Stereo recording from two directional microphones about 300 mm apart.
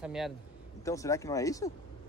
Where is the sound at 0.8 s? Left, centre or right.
Centre.